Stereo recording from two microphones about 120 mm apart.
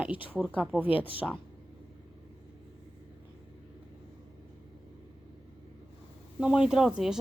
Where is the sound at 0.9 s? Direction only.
50° left (ahead or behind).